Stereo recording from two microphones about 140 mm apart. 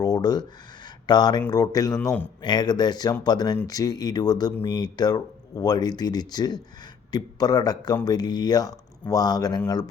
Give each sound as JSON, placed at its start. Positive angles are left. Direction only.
{"t": 0.0, "sound": "a sound", "side_deg": 30}
{"t": 1.0, "sound": "speech", "side_deg": 30}
{"t": 2.0, "sound": "a man's voice", "side_deg": 5}
{"t": 2.4, "sound": "speech", "side_deg": 30}